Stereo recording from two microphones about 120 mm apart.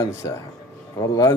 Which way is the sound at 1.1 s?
30° left (ahead or behind).